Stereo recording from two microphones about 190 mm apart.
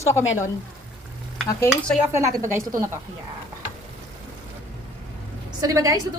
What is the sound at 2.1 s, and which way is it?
Speech, 15° right (ahead or behind).